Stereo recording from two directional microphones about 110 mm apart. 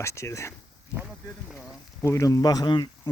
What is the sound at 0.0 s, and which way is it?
Speech, 25° left (ahead or behind).